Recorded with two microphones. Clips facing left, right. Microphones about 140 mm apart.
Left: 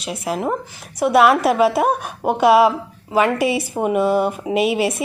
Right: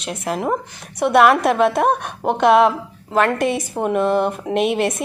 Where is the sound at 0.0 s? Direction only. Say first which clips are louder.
Even; centre (ahead or behind).